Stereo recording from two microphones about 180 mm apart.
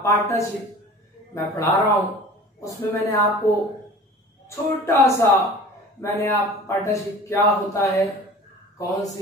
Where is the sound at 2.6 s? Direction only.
20° left (ahead or behind).